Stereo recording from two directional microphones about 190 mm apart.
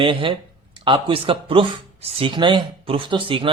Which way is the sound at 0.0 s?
25° right (ahead or behind).